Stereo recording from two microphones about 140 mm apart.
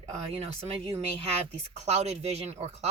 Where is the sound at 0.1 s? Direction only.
45° right (ahead or behind).